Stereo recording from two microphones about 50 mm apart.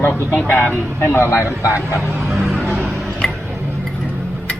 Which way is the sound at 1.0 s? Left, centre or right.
Left.